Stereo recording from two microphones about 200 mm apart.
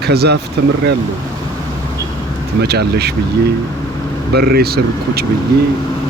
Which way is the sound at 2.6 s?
55° right (ahead or behind).